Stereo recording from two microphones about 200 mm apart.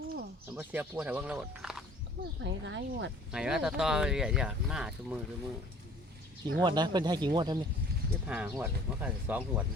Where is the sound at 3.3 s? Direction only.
5° right (ahead or behind).